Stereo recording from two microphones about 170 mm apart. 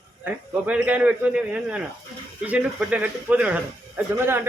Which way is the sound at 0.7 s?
10° right (ahead or behind).